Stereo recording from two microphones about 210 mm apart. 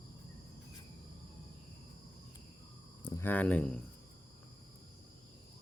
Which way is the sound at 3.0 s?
10° left (ahead or behind).